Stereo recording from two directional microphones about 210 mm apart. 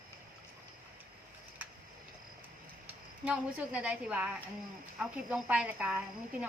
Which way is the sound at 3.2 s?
5° right (ahead or behind).